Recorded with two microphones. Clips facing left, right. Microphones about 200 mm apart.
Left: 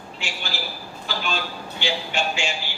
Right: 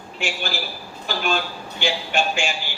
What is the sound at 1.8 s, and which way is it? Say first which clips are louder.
Speech: right 3 dB; 50° right (ahead or behind).